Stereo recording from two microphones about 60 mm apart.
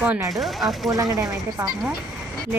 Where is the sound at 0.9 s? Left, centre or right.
Right.